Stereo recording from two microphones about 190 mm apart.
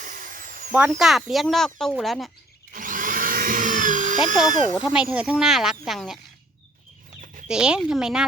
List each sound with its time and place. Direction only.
0.0 s drill: 45° right (ahead or behind)
0.7 s speech: 5° right (ahead or behind)
2.7 s a sound: 45° right (ahead or behind)
4.4 s speech: 45° right (ahead or behind)
4.8 s speech: 5° right (ahead or behind)
7.4 s speech: 5° right (ahead or behind)